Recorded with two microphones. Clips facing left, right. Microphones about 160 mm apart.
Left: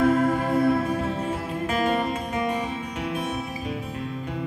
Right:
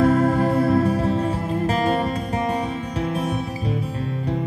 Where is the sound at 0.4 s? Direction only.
35° right (ahead or behind).